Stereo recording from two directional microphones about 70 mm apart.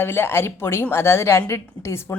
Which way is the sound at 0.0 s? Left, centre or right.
Left.